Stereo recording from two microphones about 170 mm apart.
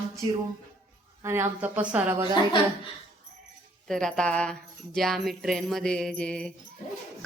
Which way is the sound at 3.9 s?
5° left (ahead or behind).